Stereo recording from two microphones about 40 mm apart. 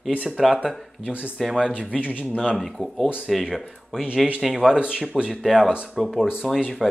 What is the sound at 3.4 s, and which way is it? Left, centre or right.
Speech, centre.